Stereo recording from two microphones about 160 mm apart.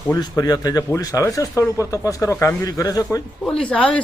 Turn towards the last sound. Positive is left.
turn(degrees=5)  # may be behind; listen again after turning